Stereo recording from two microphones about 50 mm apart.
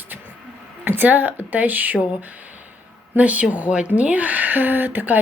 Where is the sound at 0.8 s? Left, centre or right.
Right.